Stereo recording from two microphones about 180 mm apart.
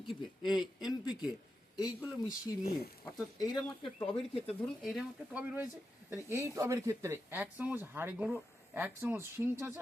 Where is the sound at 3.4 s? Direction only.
25° left (ahead or behind).